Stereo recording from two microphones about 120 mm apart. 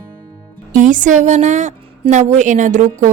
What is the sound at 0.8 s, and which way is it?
A woman's voice, 90° right.